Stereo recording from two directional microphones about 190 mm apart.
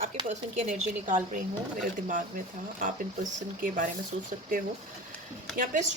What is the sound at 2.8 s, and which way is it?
Speech, 45° right (ahead or behind).